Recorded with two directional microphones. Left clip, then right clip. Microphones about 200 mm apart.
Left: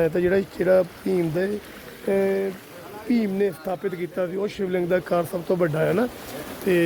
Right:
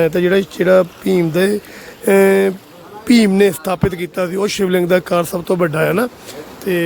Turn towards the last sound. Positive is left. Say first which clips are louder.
# right 3 dB
turn(degrees=0)  # may be behind; listen again after turning